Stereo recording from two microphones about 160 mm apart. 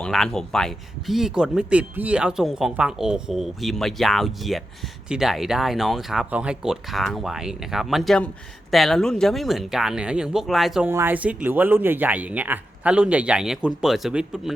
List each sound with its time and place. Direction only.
0.0 s speech: 5° left (ahead or behind)
10.8 s speech: 15° right (ahead or behind)